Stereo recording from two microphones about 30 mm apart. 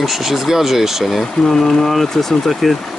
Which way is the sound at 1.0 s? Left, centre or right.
Centre.